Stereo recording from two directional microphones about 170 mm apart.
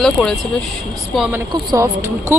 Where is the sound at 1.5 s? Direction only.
25° right (ahead or behind).